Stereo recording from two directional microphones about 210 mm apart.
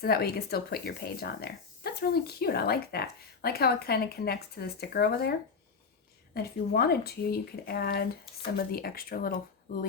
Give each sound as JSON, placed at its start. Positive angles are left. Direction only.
{"t": 0.0, "sound": "speech", "side_deg": 45}
{"t": 6.3, "sound": "speech", "side_deg": 50}